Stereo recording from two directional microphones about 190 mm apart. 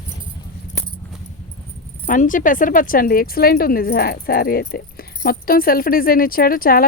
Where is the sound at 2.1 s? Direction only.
45° left (ahead or behind).